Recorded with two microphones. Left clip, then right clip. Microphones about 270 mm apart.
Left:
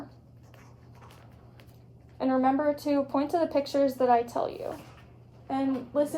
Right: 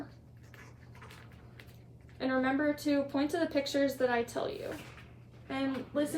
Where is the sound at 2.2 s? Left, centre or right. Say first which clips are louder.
Left 6 dB; centre.